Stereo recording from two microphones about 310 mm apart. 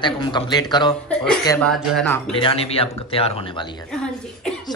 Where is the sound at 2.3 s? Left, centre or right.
Centre.